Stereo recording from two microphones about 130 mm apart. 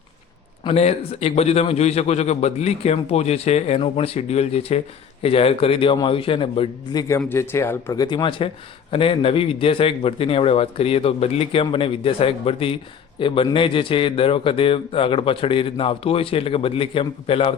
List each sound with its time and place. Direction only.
0.6 s a man's voice: 55° left (ahead or behind)
7.3 s speech: 20° left (ahead or behind)
8.0 s a man's voice: 35° left (ahead or behind)